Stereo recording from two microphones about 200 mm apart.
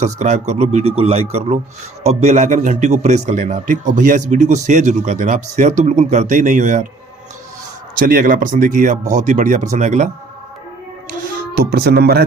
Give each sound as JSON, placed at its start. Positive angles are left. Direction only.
{"t": 0.0, "sound": "speech", "side_deg": -35}
{"t": 7.9, "sound": "speech", "side_deg": -45}
{"t": 11.2, "sound": "speech", "side_deg": -50}